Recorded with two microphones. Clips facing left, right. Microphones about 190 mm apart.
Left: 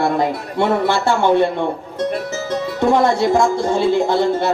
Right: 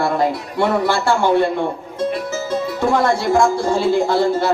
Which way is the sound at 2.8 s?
20° left (ahead or behind).